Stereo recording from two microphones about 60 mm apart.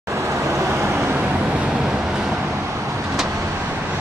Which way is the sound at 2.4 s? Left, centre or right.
Right.